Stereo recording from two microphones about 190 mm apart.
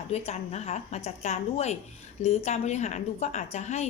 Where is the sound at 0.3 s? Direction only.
35° left (ahead or behind).